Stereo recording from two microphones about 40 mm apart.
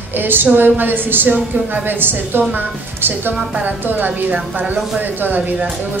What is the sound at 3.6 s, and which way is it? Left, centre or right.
A woman's voice, right.